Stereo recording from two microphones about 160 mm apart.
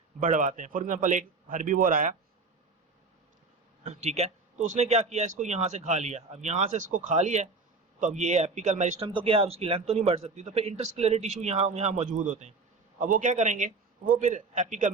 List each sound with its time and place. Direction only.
0.2 s a man's voice: 55° right (ahead or behind)
3.8 s speech: 45° right (ahead or behind)
9.0 s a man's voice: 35° right (ahead or behind); by 14.8 s 55° right (ahead or behind)